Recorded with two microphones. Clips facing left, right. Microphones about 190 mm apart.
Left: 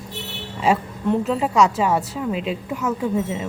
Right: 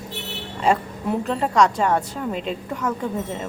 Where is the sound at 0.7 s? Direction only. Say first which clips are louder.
Left 2 dB; 5° left (ahead or behind).